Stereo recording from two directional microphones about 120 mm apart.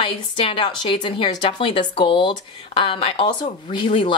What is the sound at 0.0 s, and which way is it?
A woman's voice, 45° left (ahead or behind).